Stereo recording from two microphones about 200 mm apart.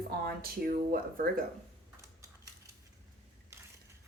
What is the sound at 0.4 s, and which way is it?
Speech, 45° right (ahead or behind).